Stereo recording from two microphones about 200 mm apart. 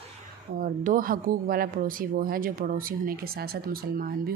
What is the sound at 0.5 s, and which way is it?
Speech, 45° right (ahead or behind).